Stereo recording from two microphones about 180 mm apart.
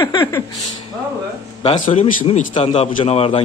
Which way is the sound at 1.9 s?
35° left (ahead or behind).